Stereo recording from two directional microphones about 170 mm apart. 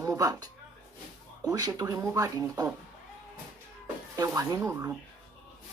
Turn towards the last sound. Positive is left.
turn(degrees=-15)  # may be behind; listen again after turning